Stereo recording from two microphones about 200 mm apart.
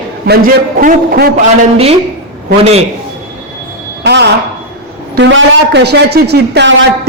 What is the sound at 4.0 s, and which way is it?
Music, 55° right (ahead or behind).